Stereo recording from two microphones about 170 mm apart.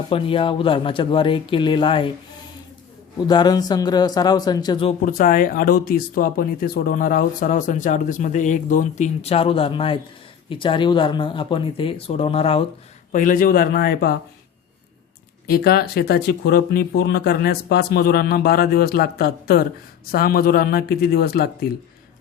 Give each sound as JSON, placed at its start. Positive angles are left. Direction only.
{"t": 0.1, "sound": "speech", "side_deg": 30}
{"t": 3.2, "sound": "speech", "side_deg": 25}
{"t": 5.0, "sound": "speech", "side_deg": 55}
{"t": 13.1, "sound": "speech", "side_deg": 50}
{"t": 15.4, "sound": "speech", "side_deg": 65}